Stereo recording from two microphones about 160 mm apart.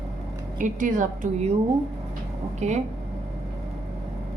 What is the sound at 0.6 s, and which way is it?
Speech, 55° right (ahead or behind).